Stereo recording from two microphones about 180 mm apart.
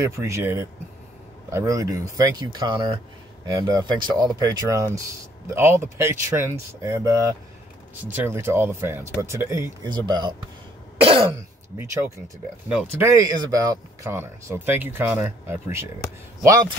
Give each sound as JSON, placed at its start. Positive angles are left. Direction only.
{"t": 0.0, "sound": "speech", "side_deg": -15}
{"t": 12.6, "sound": "speech", "side_deg": -10}